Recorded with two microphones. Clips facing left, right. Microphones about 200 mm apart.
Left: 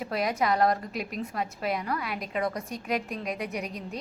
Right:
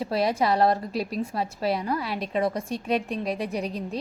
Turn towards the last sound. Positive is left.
turn(degrees=-30)  # may be behind; listen again after turning